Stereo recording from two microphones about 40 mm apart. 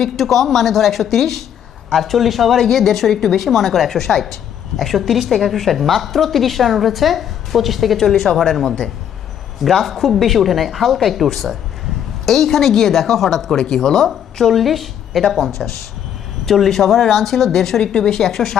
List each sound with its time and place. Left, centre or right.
0.0 s a woman's voice: centre
8.6 s speech: centre
9.6 s a woman's voice: centre